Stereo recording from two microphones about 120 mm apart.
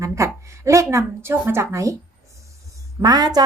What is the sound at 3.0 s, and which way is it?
Speech, 35° right (ahead or behind).